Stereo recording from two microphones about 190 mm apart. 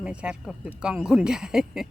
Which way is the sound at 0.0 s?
5° right (ahead or behind).